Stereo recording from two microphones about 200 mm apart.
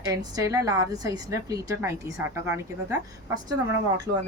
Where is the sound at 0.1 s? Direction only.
15° right (ahead or behind).